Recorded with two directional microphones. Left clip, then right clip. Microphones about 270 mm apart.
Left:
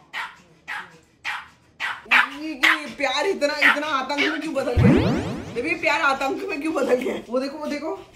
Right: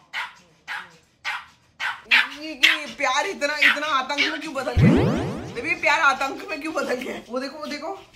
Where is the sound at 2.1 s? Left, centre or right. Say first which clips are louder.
Left 1 dB; centre.